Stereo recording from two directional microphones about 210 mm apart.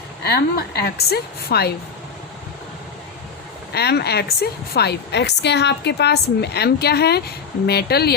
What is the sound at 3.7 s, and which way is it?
A woman's voice, 50° left (ahead or behind).